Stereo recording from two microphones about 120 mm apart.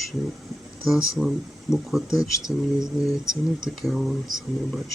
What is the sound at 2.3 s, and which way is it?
Speech, 25° left (ahead or behind).